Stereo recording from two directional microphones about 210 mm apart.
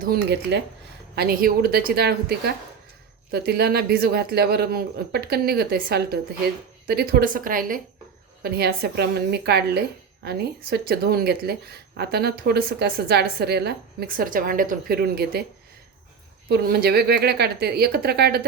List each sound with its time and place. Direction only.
0.0 s speech: 50° right (ahead or behind)
16.5 s speech: 50° right (ahead or behind)